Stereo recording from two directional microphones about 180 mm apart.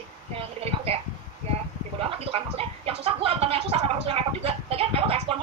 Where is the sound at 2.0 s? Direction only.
30° right (ahead or behind).